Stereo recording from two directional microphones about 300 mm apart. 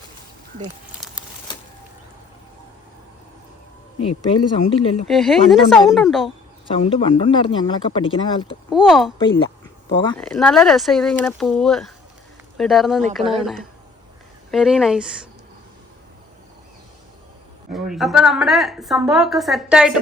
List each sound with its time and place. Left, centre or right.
4.5 s speech: centre
5.0 s a woman's voice: centre
6.7 s speech: centre
8.7 s a woman's voice: centre
9.2 s speech: centre
10.2 s a woman's voice: centre
17.7 s a woman's voice: centre